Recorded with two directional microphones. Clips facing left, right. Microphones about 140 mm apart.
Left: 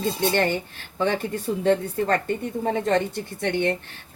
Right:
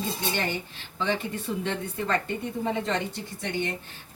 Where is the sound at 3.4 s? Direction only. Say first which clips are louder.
Left 7 dB; 60° left (ahead or behind).